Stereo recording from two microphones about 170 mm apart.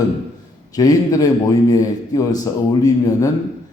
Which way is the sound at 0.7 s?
20° left (ahead or behind).